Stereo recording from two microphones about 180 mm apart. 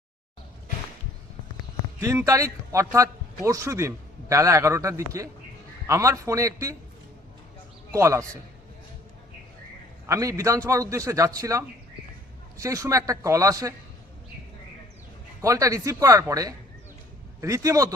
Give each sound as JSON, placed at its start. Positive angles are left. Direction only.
{"t": 2.0, "sound": "a man's voice", "side_deg": -15}
{"t": 7.9, "sound": "a man's voice", "side_deg": -15}
{"t": 10.1, "sound": "a man's voice", "side_deg": -20}
{"t": 12.6, "sound": "a man's voice", "side_deg": -15}
{"t": 15.4, "sound": "a man's voice", "side_deg": -20}